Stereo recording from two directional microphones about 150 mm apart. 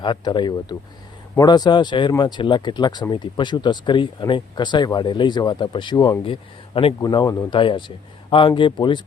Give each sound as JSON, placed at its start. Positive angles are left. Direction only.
{"t": 0.0, "sound": "speech", "side_deg": 30}